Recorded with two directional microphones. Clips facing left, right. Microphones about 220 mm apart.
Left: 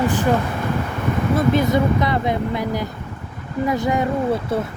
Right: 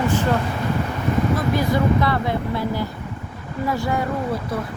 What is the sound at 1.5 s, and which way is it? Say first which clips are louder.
Speech: left 2 dB; 20° left (ahead or behind).